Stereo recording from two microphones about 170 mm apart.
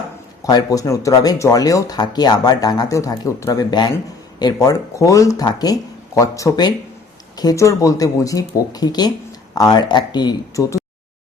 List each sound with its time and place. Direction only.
0.4 s speech: 20° left (ahead or behind)